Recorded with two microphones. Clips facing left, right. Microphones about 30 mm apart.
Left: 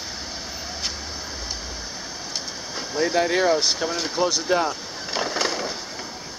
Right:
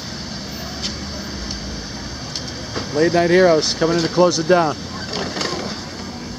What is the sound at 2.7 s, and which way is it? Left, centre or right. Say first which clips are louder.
Speech: right 6 dB; centre.